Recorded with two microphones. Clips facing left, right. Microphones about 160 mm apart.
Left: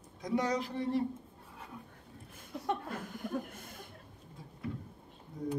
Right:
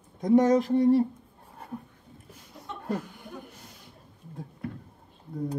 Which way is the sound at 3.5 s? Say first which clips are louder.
Left 2 dB; 50° left (ahead or behind).